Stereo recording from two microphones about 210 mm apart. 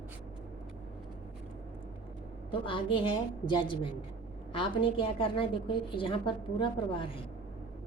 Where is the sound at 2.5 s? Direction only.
25° left (ahead or behind).